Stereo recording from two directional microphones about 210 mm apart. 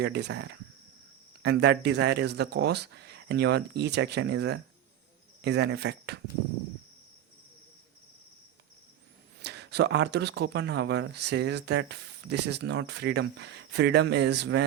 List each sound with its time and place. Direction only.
0.0 s speech: 50° right (ahead or behind)
9.4 s speech: 50° right (ahead or behind)